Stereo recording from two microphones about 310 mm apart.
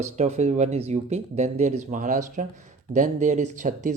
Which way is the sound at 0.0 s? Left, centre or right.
Right.